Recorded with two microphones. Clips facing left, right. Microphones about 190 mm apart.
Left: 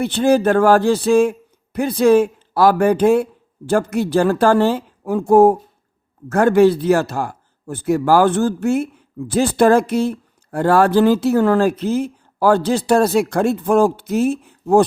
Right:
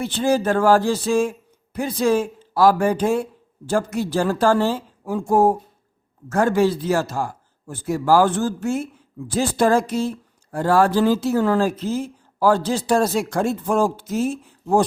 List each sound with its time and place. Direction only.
0.0 s a man's voice: 60° left (ahead or behind)